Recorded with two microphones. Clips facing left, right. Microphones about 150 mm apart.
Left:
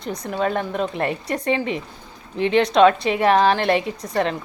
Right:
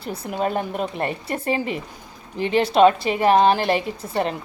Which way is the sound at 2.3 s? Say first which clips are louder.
Left 1 dB; centre (ahead or behind).